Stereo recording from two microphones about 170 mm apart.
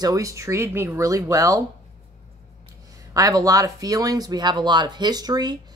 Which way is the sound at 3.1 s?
20° right (ahead or behind).